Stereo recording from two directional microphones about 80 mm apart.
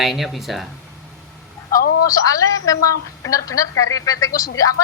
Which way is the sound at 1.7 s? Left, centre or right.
Left.